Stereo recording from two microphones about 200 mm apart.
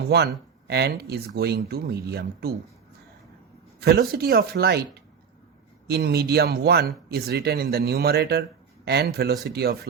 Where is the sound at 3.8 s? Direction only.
50° right (ahead or behind).